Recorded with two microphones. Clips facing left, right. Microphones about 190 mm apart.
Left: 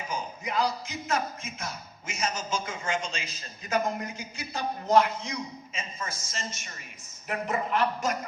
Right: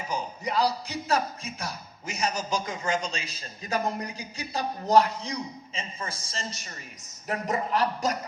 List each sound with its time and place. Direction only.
0.1 s a man's voice: 35° right (ahead or behind)